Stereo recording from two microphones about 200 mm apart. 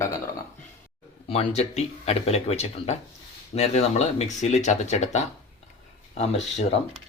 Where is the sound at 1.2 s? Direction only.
30° left (ahead or behind).